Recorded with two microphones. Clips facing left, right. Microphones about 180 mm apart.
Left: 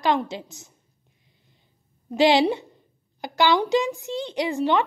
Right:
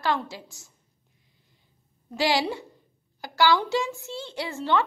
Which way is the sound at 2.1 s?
20° left (ahead or behind).